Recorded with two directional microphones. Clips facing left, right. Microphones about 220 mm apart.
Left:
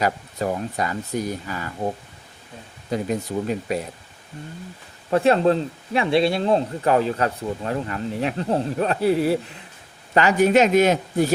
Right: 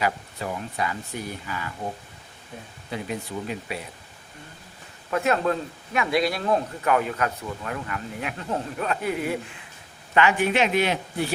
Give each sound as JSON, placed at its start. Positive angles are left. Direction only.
{"t": 0.0, "sound": "speech", "side_deg": 40}
{"t": 2.9, "sound": "speech", "side_deg": 40}
{"t": 5.1, "sound": "speech", "side_deg": 30}